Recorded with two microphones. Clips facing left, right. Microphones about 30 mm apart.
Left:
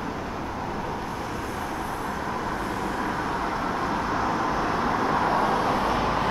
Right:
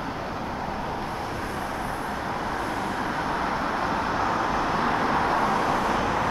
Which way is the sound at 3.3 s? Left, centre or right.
Centre.